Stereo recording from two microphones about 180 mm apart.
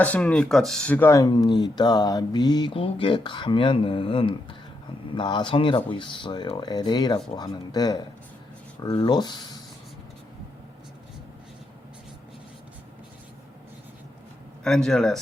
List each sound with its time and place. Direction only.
0.0 s speech: 10° left (ahead or behind); by 9.5 s 25° left (ahead or behind)
14.6 s speech: 5° left (ahead or behind)